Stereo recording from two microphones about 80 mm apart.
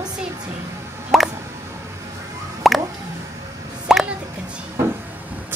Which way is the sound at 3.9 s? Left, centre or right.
Centre.